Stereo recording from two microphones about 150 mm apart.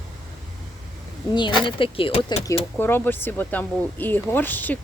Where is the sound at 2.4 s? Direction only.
15° left (ahead or behind).